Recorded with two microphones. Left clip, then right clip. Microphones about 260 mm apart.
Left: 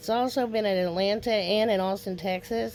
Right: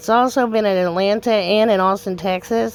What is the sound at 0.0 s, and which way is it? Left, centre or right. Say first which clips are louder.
A woman's voice: right 11 dB; right.